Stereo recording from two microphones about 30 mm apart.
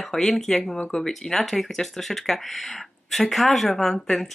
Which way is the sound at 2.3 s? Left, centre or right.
Centre.